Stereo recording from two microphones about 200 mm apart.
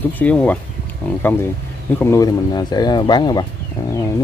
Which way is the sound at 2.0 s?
15° left (ahead or behind).